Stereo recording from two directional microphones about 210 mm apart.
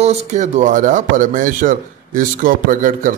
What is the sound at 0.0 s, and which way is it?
A man's voice, 30° right (ahead or behind).